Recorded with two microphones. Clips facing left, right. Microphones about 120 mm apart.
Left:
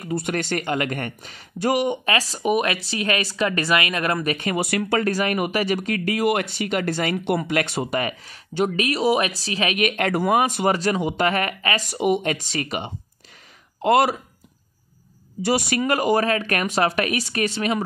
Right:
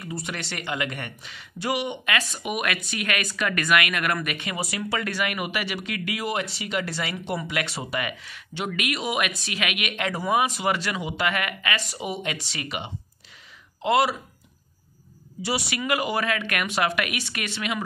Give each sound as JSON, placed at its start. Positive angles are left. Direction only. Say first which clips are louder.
{"t": 0.0, "sound": "speech", "louder": "left 8 dB", "side_deg": 50}
{"t": 4.6, "sound": "speech", "louder": "left 6 dB", "side_deg": 60}
{"t": 5.0, "sound": "speech", "louder": "left 6 dB", "side_deg": 40}
{"t": 6.2, "sound": "speech", "louder": "left 7 dB", "side_deg": 55}
{"t": 10.1, "sound": "speech", "louder": "left 1 dB", "side_deg": 55}
{"t": 12.0, "sound": "speech", "louder": "left 9 dB", "side_deg": 55}
{"t": 15.4, "sound": "speech", "louder": "left 7 dB", "side_deg": 50}